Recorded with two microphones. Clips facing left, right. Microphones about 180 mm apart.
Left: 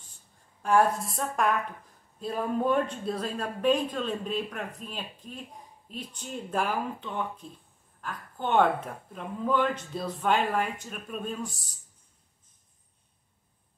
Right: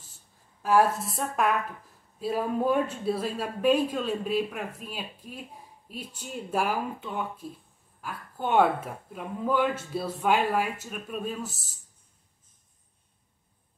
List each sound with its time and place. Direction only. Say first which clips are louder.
0.6 s a woman's voice: right 1 dB; 5° right (ahead or behind)